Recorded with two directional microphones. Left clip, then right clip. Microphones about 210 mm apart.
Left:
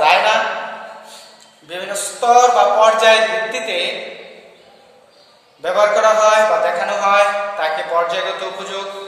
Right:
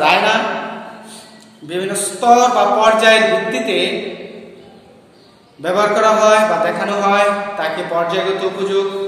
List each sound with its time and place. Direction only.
0.0 s a sound: centre (ahead or behind)
1.7 s a man's voice: centre (ahead or behind)
5.6 s a man's voice: 5° left (ahead or behind)